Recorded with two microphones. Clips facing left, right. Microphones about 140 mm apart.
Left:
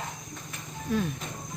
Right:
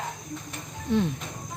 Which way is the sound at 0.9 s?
25° right (ahead or behind).